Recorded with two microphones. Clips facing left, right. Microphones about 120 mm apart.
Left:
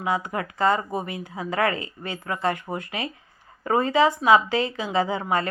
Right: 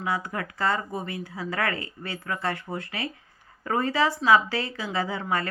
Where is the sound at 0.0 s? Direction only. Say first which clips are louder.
Left 3 dB; 20° left (ahead or behind).